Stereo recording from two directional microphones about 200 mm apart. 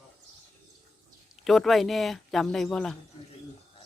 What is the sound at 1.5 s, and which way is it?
Speech, centre (ahead or behind).